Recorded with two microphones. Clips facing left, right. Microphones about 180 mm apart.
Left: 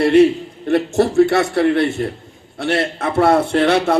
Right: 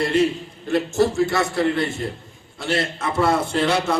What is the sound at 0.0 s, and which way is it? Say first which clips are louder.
A man's voice: left 8 dB; 65° left (ahead or behind).